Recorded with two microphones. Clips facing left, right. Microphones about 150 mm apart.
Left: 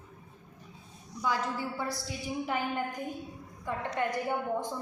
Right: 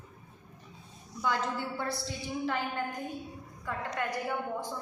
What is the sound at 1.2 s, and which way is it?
A woman's voice, 5° left (ahead or behind).